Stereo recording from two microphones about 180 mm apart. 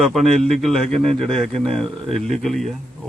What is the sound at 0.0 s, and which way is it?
Speech, centre (ahead or behind).